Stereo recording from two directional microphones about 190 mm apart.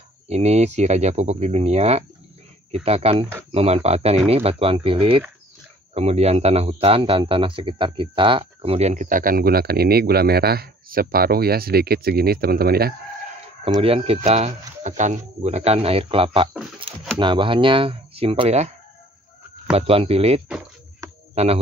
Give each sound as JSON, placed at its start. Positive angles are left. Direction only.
{"t": 0.3, "sound": "a man's voice", "side_deg": -35}
{"t": 13.7, "sound": "speech", "side_deg": -30}
{"t": 19.7, "sound": "speech", "side_deg": -30}